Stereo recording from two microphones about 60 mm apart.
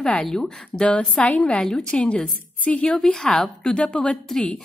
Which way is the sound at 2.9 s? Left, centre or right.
Centre.